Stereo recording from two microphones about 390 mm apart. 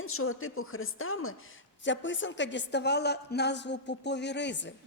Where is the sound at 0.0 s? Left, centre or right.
Left.